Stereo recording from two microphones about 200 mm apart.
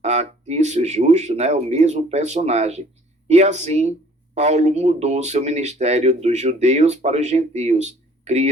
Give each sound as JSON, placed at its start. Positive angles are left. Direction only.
{"t": 0.0, "sound": "speech", "side_deg": -35}